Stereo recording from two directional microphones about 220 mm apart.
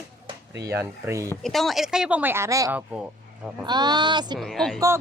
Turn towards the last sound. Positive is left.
turn(degrees=0)  # may be behind; listen again after turning